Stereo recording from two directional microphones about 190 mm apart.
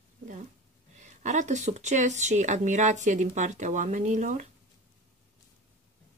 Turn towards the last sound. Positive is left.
turn(degrees=-40)  # may be behind; listen again after turning